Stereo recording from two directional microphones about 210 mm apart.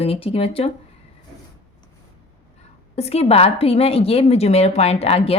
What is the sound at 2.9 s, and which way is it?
A woman's voice, 30° left (ahead or behind).